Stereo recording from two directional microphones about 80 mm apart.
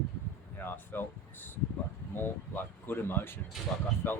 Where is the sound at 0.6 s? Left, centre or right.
Left.